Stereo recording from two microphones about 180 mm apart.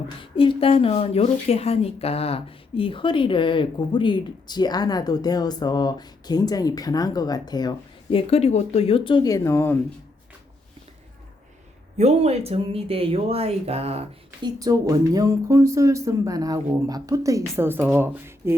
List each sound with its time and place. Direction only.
0.2 s speech: 30° left (ahead or behind)
8.3 s speech: 35° left (ahead or behind); by 9.7 s 15° left (ahead or behind)
11.9 s speech: 35° right (ahead or behind)
14.6 s speech: 20° right (ahead or behind)